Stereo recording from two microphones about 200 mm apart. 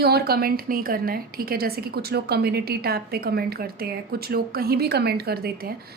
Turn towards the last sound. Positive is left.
turn(degrees=-50)  # may be behind; listen again after turning